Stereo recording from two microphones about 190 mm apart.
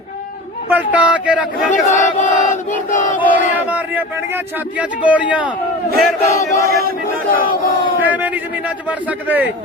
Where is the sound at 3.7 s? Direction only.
10° right (ahead or behind).